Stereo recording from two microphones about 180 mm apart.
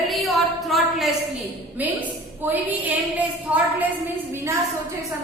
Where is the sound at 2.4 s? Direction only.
10° right (ahead or behind).